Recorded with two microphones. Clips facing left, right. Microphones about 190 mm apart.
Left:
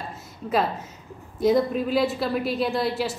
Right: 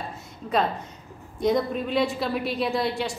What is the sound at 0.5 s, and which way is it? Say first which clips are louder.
A woman's voice: even; 5° left (ahead or behind).